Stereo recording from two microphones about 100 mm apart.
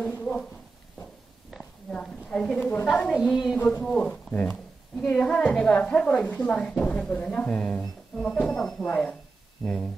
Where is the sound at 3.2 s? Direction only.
Centre (ahead or behind).